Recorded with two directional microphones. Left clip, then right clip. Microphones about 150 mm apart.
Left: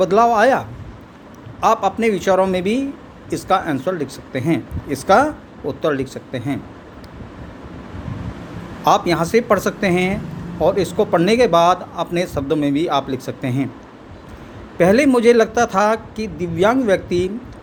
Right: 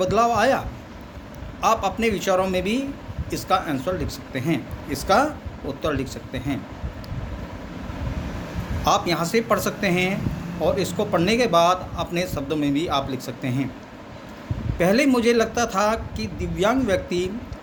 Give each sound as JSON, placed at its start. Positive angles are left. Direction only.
{"t": 0.0, "sound": "speech", "side_deg": 55}
{"t": 1.6, "sound": "speech", "side_deg": 55}
{"t": 8.8, "sound": "speech", "side_deg": 55}
{"t": 14.8, "sound": "speech", "side_deg": 55}